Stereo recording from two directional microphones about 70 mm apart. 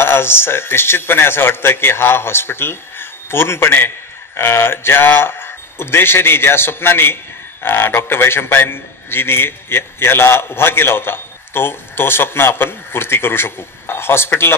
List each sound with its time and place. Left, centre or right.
0.0 s a man's voice: left